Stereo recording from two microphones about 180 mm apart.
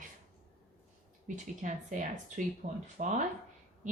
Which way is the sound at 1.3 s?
45° right (ahead or behind).